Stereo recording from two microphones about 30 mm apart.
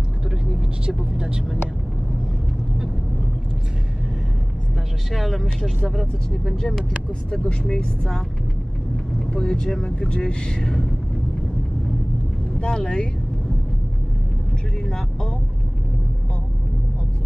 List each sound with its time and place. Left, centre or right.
0.5 s vehicle: right
5.1 s speech: centre
5.9 s speech: centre
9.4 s speech: left
12.6 s speech: left
14.9 s vehicle: left